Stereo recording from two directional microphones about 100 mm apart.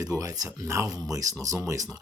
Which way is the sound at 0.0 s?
35° right (ahead or behind).